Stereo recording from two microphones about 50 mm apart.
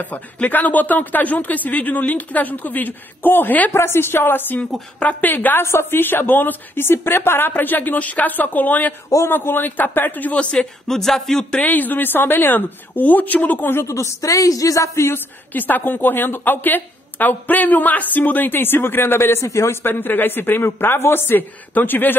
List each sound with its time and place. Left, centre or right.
0.0 s speech: left
3.7 s a woman's voice: left
5.6 s speech: left
10.9 s speech: centre
11.6 s speech: left
13.8 s speech: left
15.1 s a woman's voice: left
19.8 s a woman's voice: left